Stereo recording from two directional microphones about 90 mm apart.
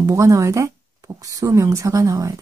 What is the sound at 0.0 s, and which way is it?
Speech, 40° right (ahead or behind).